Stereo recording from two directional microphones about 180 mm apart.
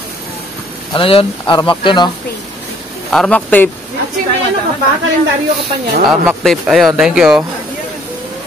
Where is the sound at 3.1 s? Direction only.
5° left (ahead or behind).